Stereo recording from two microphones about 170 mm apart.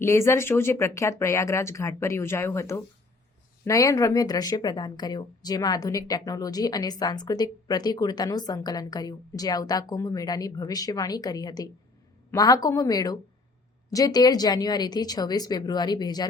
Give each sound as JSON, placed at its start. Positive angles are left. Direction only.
{"t": 0.0, "sound": "speech", "side_deg": 15}